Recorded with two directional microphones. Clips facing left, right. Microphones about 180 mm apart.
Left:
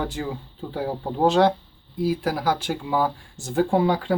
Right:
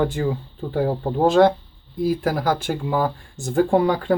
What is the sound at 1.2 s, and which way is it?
Speech, 50° right (ahead or behind).